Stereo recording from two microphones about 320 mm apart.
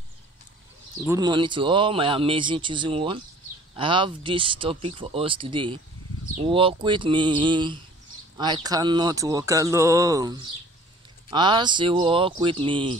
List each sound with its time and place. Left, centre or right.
1.0 s speech: centre